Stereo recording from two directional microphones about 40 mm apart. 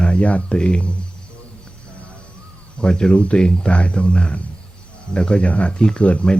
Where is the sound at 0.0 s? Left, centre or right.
Left.